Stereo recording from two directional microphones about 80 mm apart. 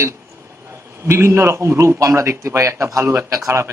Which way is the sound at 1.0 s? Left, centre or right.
Right.